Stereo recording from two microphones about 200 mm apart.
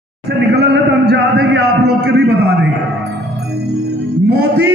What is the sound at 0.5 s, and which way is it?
A man's voice, 55° right (ahead or behind).